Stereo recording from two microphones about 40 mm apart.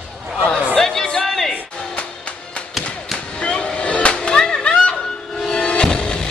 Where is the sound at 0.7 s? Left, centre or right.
Centre.